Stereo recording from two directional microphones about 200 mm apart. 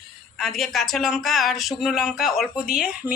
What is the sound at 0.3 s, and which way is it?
Speech, centre (ahead or behind).